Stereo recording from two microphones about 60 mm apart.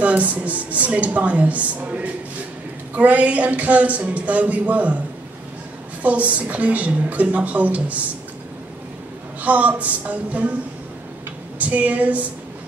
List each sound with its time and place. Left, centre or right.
0.0 s a woman's voice: right
6.0 s a woman's voice: right
9.4 s a woman's voice: right
11.5 s a woman's voice: right